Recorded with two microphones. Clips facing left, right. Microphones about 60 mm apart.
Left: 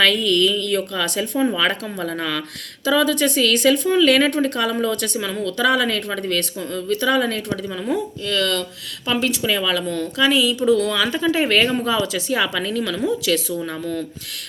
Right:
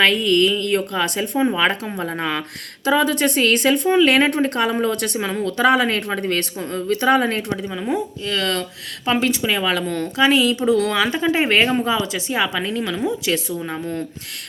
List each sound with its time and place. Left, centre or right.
0.0 s speech: right
7.4 s speech: right
9.6 s speech: right
10.2 s speech: right
11.1 s speech: right